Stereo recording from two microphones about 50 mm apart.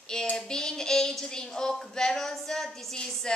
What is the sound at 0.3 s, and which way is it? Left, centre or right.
Speech, centre.